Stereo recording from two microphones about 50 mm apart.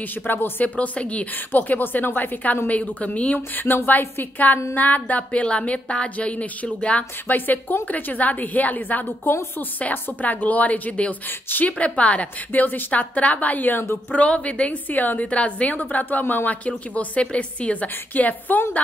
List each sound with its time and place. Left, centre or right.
0.3 s a woman's voice: left
0.7 s a woman's voice: left
1.5 s a woman's voice: left
3.3 s a woman's voice: left
7.2 s a woman's voice: left